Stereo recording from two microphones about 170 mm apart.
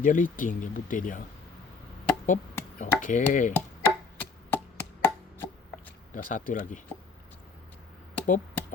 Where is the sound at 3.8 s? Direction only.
10° left (ahead or behind).